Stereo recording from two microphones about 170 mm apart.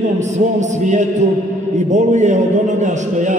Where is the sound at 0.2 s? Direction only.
45° right (ahead or behind).